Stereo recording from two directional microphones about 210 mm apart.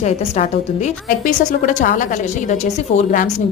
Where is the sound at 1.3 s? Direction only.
40° left (ahead or behind).